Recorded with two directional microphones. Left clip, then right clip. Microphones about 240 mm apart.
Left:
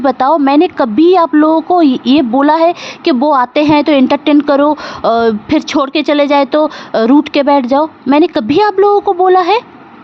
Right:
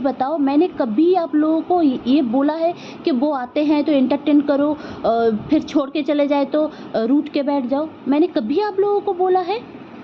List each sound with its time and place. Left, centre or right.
0.0 s a woman's voice: left